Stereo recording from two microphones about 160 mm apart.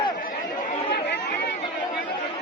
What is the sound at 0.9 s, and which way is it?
Chatter, 90° left.